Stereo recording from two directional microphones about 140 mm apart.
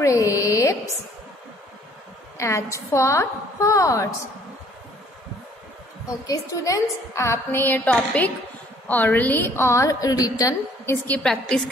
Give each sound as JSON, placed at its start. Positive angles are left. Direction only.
{"t": 0.0, "sound": "a sound", "side_deg": 25}
{"t": 2.3, "sound": "a woman's voice", "side_deg": 20}
{"t": 6.2, "sound": "a woman's voice", "side_deg": 25}
{"t": 11.1, "sound": "a woman's voice", "side_deg": 5}